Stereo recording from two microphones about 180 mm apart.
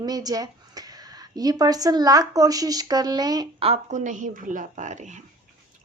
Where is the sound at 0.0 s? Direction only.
20° right (ahead or behind).